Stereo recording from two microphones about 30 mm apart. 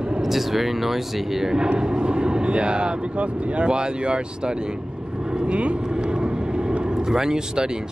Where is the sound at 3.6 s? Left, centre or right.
Right.